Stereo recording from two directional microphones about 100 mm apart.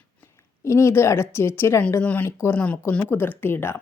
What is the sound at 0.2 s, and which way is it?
Speech, 30° left (ahead or behind).